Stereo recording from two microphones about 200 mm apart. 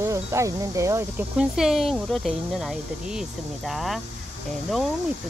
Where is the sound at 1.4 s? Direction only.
Centre (ahead or behind).